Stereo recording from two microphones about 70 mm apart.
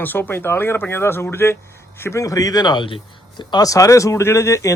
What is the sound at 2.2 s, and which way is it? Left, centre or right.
Speech, left.